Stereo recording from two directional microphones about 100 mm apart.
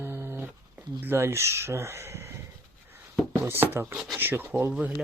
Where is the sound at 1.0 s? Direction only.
25° right (ahead or behind).